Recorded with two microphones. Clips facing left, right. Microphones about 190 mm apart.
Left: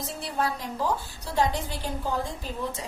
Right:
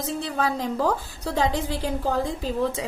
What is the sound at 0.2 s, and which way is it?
A woman's voice, 90° right.